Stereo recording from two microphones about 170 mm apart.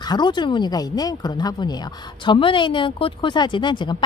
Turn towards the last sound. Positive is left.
turn(degrees=25)  # may be behind; listen again after turning